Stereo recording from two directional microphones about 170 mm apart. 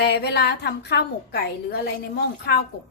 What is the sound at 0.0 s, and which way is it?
A woman's voice, 75° left (ahead or behind).